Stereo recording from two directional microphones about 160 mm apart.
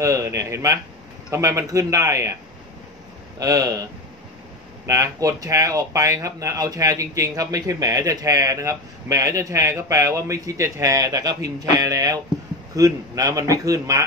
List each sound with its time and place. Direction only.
0.0 s speech: 20° right (ahead or behind)
3.3 s speech: 20° right (ahead or behind)
4.8 s speech: 20° right (ahead or behind)